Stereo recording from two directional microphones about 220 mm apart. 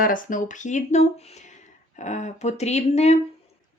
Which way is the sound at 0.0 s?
40° left (ahead or behind).